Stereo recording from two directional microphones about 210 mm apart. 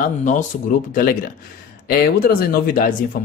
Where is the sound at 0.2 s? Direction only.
40° left (ahead or behind).